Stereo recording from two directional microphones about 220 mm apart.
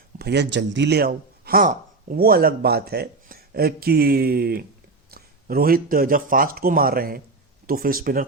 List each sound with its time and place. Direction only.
0.2 s speech: 50° right (ahead or behind)